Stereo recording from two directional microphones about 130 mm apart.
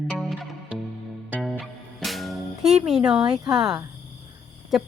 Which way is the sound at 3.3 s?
5° right (ahead or behind).